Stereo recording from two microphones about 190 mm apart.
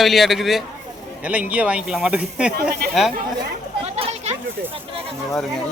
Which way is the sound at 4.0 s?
35° right (ahead or behind).